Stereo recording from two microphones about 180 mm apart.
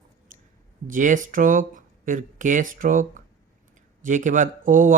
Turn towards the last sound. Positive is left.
turn(degrees=-45)  # may be behind; listen again after turning